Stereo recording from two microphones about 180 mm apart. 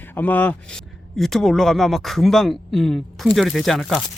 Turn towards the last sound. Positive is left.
turn(degrees=0)  # may be behind; listen again after turning